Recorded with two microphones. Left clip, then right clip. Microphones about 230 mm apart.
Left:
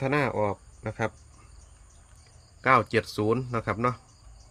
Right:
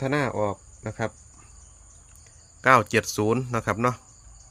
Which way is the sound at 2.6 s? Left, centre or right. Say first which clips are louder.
Right 3 dB; right.